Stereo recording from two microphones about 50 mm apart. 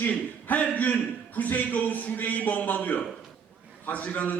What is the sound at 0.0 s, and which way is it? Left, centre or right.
A man's voice, left.